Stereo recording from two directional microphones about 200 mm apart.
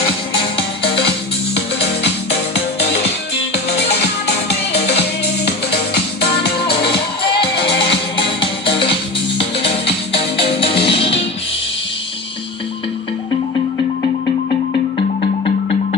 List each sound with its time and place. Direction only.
0.5 s music: 25° left (ahead or behind)
4.3 s music: 55° left (ahead or behind)
8.1 s music: 25° left (ahead or behind)
14.9 s music: 30° left (ahead or behind)